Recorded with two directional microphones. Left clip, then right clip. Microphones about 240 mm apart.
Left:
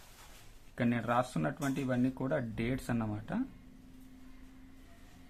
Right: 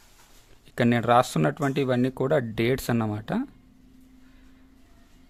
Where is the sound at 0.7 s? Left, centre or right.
Right.